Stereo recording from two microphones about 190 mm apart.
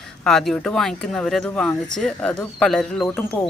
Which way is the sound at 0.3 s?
Centre (ahead or behind).